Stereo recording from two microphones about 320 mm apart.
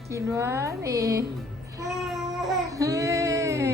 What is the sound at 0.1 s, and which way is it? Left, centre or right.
A woman's voice, centre.